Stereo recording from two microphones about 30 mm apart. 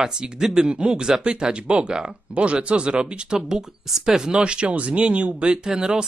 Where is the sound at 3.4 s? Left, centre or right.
Right.